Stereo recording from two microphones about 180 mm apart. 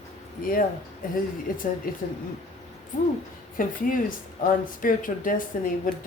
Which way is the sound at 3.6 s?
50° left (ahead or behind).